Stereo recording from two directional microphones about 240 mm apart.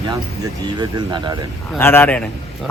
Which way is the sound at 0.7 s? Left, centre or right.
Centre.